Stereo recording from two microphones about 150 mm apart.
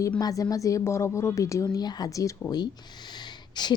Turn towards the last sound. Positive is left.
turn(degrees=30)  # may be behind; listen again after turning